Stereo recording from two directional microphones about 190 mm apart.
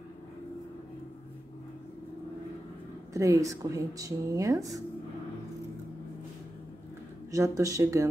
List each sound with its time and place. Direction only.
3.1 s speech: 15° right (ahead or behind)
7.2 s speech: 15° right (ahead or behind)